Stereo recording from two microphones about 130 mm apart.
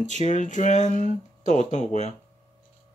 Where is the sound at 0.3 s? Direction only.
70° left (ahead or behind).